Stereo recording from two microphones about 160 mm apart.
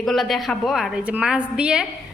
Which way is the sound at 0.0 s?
Centre (ahead or behind).